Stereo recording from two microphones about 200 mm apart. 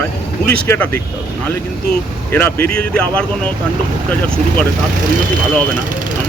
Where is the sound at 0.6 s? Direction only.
5° left (ahead or behind).